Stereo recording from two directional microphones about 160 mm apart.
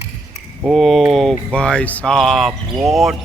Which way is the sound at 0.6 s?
Centre (ahead or behind).